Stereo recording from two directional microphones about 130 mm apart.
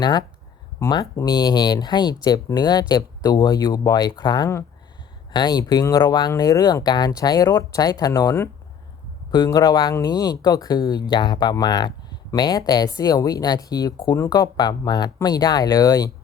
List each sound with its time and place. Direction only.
0.0 s speech: 30° left (ahead or behind)